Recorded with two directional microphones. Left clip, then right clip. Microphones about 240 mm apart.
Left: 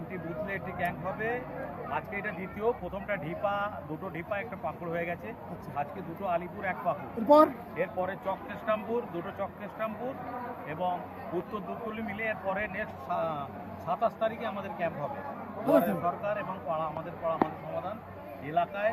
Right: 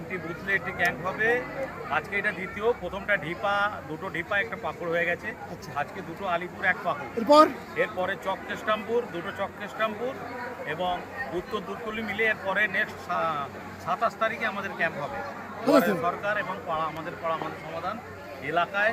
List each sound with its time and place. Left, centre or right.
0.1 s speech: right
18.4 s speech: right